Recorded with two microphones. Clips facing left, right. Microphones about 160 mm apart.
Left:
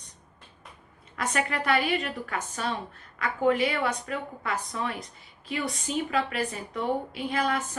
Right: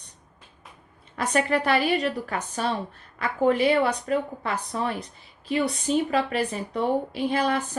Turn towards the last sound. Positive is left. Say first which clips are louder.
# right 4 dB
turn(degrees=-30)  # may be behind; listen again after turning